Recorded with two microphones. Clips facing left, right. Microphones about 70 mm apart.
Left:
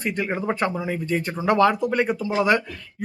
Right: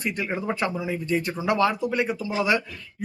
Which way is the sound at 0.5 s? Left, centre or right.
Left.